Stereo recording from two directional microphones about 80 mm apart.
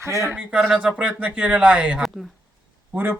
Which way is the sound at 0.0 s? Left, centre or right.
Right.